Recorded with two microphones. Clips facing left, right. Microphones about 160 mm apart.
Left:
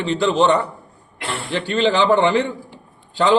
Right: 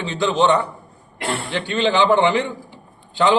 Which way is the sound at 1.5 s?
35° left (ahead or behind).